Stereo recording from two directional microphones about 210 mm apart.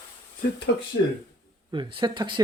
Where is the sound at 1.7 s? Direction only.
25° right (ahead or behind).